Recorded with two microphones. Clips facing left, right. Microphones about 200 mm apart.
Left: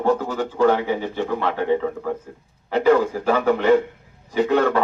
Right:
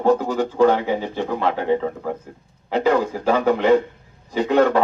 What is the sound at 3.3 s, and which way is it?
A man's voice, 20° right (ahead or behind).